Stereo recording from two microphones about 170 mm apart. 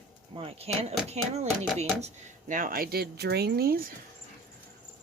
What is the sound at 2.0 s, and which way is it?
Speech, 50° right (ahead or behind).